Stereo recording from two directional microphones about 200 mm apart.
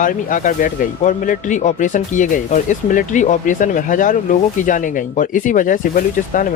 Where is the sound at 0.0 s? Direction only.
40° left (ahead or behind).